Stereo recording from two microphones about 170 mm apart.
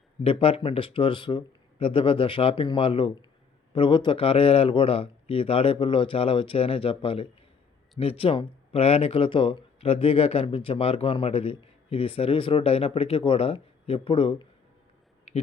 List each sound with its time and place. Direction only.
0.2 s speech: 35° left (ahead or behind)